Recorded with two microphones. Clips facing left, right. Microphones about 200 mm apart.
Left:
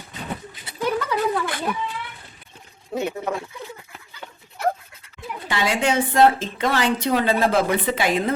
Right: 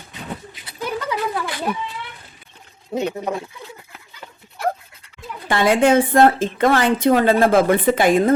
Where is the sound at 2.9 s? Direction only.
20° right (ahead or behind).